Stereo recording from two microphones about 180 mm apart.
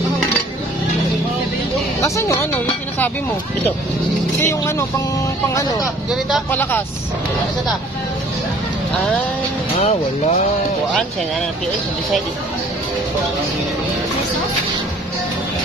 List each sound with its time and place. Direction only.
2.0 s speech: 15° left (ahead or behind)
4.4 s speech: 15° left (ahead or behind)
9.8 s speech: 40° left (ahead or behind)